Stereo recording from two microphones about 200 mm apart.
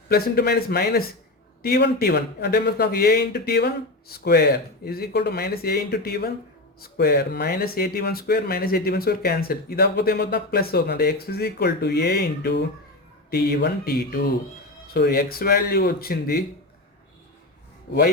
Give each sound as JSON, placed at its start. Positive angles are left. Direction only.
{"t": 0.1, "sound": "speech", "side_deg": 50}